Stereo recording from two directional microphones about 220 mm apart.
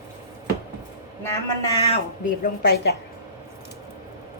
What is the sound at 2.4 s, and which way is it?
Speech, 45° left (ahead or behind).